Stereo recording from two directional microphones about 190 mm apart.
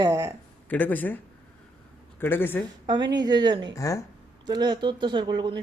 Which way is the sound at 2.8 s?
25° right (ahead or behind).